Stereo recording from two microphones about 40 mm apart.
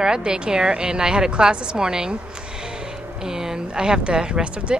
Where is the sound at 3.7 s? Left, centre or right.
Right.